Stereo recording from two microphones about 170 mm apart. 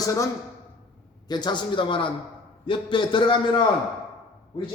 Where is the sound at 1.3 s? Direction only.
25° left (ahead or behind).